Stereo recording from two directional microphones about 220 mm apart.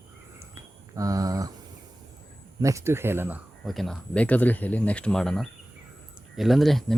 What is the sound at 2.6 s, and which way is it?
Speech, 15° right (ahead or behind).